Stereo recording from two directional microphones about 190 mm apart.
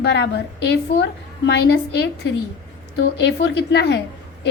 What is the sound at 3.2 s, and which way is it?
Speech, 65° left (ahead or behind).